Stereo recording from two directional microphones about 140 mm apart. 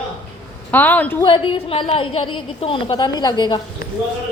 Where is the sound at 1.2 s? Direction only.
35° left (ahead or behind).